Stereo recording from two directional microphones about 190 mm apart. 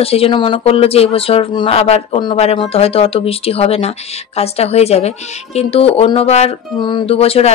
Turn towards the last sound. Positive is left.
turn(degrees=30)  # may be behind; listen again after turning